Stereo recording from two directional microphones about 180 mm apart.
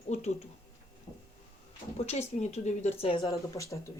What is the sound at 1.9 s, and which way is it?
A woman's voice, 35° left (ahead or behind).